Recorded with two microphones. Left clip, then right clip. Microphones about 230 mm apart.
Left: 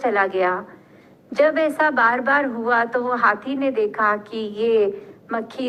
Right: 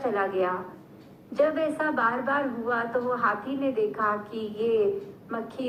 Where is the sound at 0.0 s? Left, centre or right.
Left.